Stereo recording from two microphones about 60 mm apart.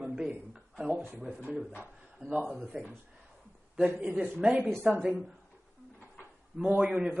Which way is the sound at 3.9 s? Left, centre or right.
Right.